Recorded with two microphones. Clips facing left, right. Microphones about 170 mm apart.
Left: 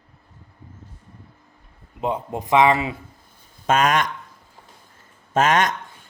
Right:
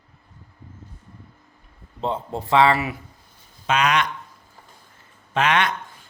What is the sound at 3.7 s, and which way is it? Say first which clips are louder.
Speech: left 2 dB; 45° left (ahead or behind).